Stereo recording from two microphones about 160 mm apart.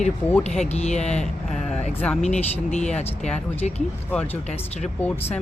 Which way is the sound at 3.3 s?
5° left (ahead or behind).